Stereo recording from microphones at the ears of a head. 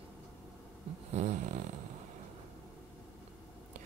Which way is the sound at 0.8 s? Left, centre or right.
Right.